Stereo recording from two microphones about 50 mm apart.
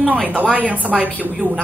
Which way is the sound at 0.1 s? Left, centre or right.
Right.